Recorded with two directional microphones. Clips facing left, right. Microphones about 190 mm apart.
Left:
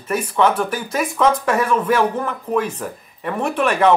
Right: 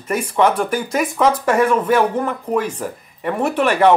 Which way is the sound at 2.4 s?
10° right (ahead or behind).